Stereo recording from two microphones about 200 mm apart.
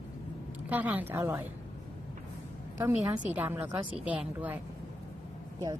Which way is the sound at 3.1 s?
10° right (ahead or behind).